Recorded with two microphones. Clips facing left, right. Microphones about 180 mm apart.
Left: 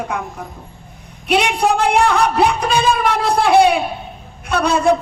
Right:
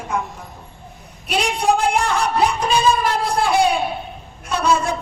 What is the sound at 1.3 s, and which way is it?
A man's voice, 65° left (ahead or behind).